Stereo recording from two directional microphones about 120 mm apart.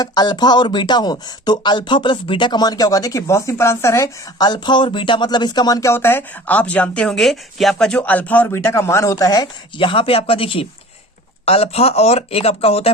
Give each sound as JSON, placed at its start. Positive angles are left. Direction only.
{"t": 0.0, "sound": "speech", "side_deg": 35}
{"t": 5.9, "sound": "speech", "side_deg": 20}
{"t": 9.7, "sound": "speech", "side_deg": 45}